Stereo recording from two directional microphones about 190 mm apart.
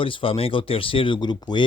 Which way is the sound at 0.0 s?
30° left (ahead or behind).